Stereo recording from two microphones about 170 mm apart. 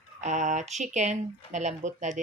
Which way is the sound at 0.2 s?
45° right (ahead or behind).